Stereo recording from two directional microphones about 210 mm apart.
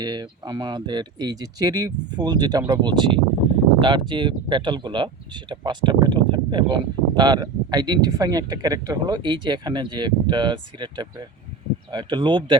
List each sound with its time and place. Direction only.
0.0 s speech: 20° right (ahead or behind)